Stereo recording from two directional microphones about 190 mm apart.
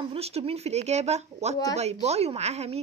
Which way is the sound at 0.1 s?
30° right (ahead or behind).